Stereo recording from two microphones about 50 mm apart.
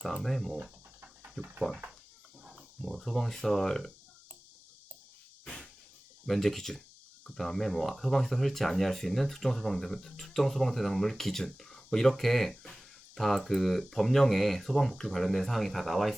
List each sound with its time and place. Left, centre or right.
0.0 s speech: centre
1.2 s a sound: right
2.6 s speech: centre
6.2 s speech: centre